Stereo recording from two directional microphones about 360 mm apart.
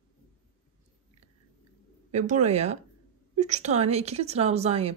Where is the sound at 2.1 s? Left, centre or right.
Centre.